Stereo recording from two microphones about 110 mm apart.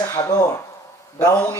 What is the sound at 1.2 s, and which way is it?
Speech, 35° left (ahead or behind).